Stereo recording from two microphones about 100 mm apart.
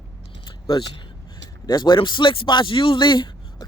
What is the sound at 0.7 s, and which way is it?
Speech, 50° left (ahead or behind).